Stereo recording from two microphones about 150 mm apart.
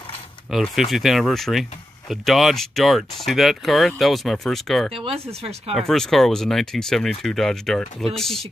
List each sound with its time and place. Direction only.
0.5 s speech: centre (ahead or behind)
4.9 s speech: 40° right (ahead or behind)
5.8 s speech: 5° left (ahead or behind)